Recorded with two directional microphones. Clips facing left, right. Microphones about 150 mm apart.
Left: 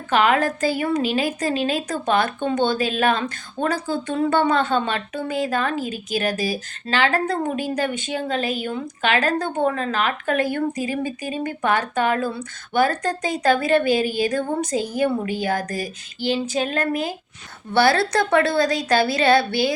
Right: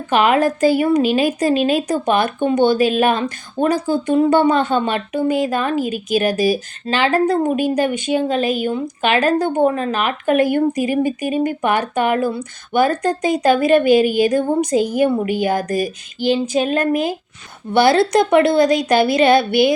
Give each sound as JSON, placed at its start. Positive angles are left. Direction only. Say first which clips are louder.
{"t": 0.1, "sound": "a woman's voice", "louder": "right 4 dB", "side_deg": -20}